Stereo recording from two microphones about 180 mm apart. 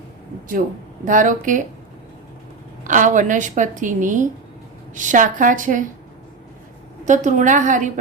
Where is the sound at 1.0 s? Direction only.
45° right (ahead or behind).